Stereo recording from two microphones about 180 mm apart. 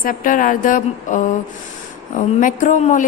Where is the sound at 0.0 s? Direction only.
50° left (ahead or behind).